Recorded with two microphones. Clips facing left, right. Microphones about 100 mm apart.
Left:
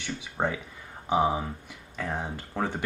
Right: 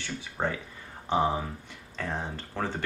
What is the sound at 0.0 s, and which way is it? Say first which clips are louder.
Speech: left 2 dB; 15° left (ahead or behind).